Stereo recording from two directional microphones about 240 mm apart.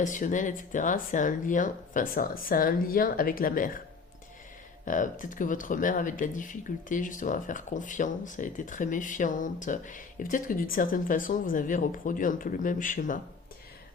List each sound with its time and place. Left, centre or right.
0.0 s speech: left
4.9 s speech: left